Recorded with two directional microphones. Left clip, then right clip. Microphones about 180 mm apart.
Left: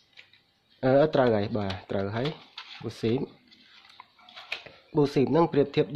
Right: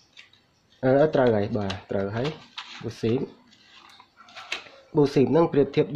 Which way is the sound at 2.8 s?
20° left (ahead or behind).